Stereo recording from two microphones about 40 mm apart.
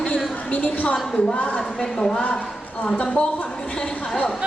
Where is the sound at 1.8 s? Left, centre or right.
Centre.